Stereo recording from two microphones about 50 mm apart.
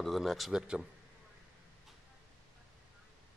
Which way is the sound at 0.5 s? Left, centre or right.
Centre.